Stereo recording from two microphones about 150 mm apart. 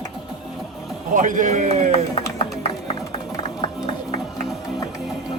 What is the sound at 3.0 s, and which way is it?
Music, 25° left (ahead or behind).